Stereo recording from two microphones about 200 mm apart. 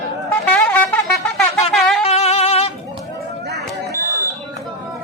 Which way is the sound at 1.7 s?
Centre (ahead or behind).